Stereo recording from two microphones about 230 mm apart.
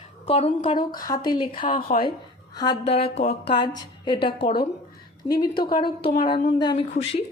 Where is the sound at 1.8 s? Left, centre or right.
Left.